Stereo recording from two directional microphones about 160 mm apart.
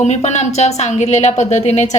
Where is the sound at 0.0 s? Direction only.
45° left (ahead or behind).